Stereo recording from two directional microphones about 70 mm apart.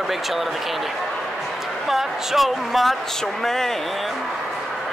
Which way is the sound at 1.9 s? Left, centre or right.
Centre.